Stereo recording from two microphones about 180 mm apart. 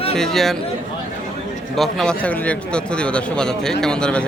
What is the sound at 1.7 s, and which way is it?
A man's voice, centre (ahead or behind).